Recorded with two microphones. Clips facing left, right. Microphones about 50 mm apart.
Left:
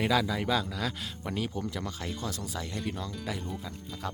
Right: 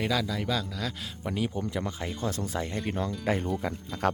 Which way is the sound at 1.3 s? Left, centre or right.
Centre.